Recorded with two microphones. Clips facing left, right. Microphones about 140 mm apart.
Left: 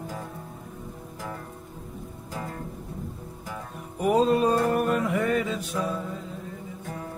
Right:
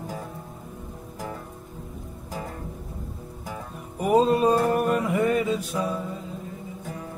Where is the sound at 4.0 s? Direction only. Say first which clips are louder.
Right 2 dB; centre (ahead or behind).